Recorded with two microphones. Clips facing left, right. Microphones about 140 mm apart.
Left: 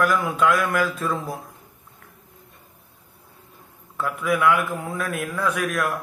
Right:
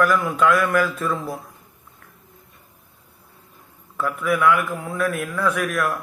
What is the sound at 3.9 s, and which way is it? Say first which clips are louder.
A man's voice: right 1 dB; 20° left (ahead or behind).